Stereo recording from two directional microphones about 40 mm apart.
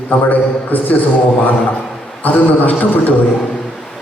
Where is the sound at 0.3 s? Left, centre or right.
Left.